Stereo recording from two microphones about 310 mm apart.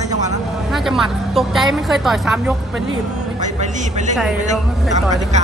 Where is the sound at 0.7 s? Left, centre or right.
Centre.